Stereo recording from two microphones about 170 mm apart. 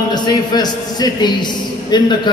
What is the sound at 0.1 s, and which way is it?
A man's voice, 25° left (ahead or behind).